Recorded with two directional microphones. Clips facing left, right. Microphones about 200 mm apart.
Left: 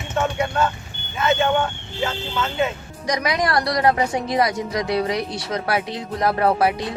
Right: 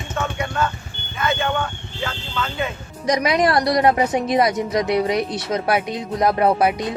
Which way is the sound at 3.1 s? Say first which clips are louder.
Right 4 dB; 25° right (ahead or behind).